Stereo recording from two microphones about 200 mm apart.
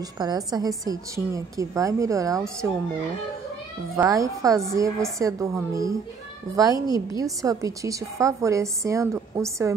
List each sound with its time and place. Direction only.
0.2 s a woman's voice: 20° right (ahead or behind)
3.9 s a woman's voice: 15° right (ahead or behind)